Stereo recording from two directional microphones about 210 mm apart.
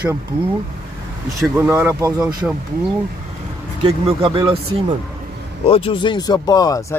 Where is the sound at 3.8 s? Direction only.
20° right (ahead or behind).